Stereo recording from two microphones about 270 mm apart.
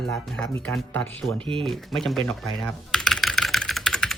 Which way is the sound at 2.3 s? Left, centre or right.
Centre.